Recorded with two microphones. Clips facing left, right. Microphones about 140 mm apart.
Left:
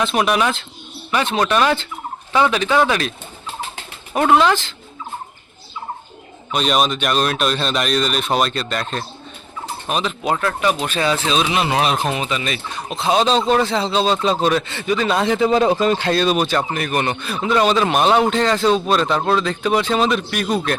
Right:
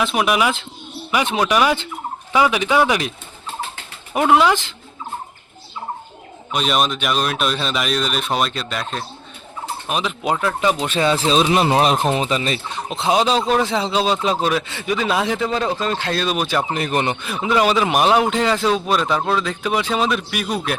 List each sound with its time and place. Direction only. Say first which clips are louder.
0.0 s a man's voice: even; 5° right (ahead or behind)
4.1 s a man's voice: even; 15° right (ahead or behind)
6.5 s a man's voice: left 2 dB; centre (ahead or behind)
15.4 s speech: left 6 dB; 15° left (ahead or behind); by 16.6 s 5° right (ahead or behind)
16.7 s a man's voice: even; 25° right (ahead or behind); by 20.7 s 5° right (ahead or behind)